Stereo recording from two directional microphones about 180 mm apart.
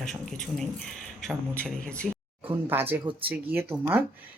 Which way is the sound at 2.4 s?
10° right (ahead or behind).